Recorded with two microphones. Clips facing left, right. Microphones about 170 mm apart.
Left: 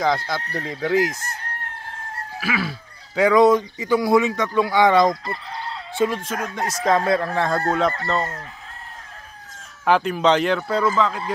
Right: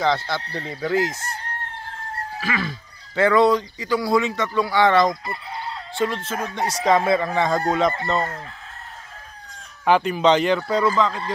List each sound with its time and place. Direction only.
0.0 s speech: 10° left (ahead or behind)
2.4 s speech: 10° left (ahead or behind)
6.6 s speech: 5° right (ahead or behind)
9.8 s speech: centre (ahead or behind)